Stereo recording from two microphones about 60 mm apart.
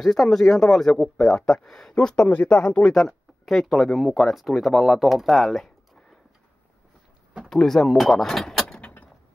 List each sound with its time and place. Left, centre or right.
0.0 s a man's voice: centre
2.2 s speech: left; by 6.1 s centre
7.4 s speech: centre
8.6 s vehicle: centre